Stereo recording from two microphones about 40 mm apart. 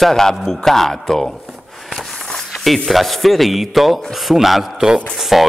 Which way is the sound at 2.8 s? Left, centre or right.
Centre.